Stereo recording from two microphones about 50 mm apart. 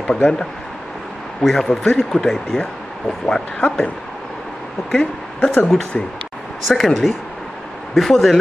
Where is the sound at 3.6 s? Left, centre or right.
Left.